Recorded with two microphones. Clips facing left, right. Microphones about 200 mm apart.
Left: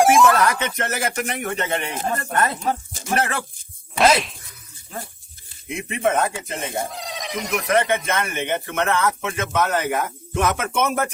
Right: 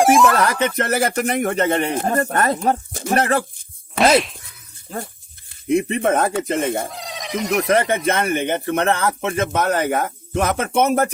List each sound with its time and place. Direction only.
0.0 s music: centre (ahead or behind)
0.3 s speech: 35° right (ahead or behind)
2.6 s speech: 55° right (ahead or behind)
3.1 s speech: 35° right (ahead or behind)
5.6 s speech: 35° right (ahead or behind)
6.3 s speech: 55° right (ahead or behind)
6.8 s speech: centre (ahead or behind)
8.0 s speech: 35° right (ahead or behind)